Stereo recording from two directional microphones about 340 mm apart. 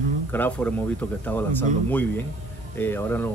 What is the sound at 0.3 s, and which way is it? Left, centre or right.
Speech, centre.